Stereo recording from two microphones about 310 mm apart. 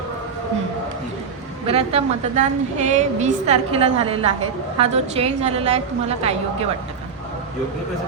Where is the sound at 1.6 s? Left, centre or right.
Centre.